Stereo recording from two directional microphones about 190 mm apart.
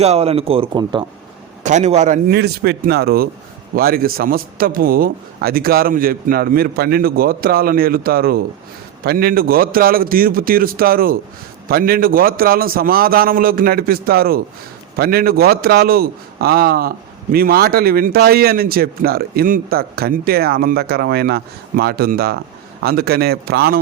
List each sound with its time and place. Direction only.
0.0 s speech: 35° right (ahead or behind)
1.6 s speech: 40° right (ahead or behind)
2.3 s a man's voice: 60° right (ahead or behind)